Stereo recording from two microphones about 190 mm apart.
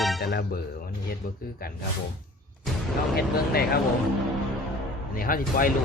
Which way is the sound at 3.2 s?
55° left (ahead or behind).